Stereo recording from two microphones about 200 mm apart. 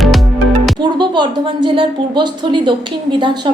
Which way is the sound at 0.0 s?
Centre (ahead or behind).